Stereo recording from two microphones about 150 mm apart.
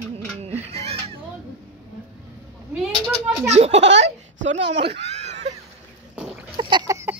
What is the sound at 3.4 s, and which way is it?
Speech, 45° right (ahead or behind).